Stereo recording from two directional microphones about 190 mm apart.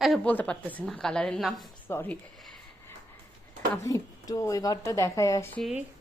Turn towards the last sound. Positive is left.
turn(degrees=0)  # may be behind; listen again after turning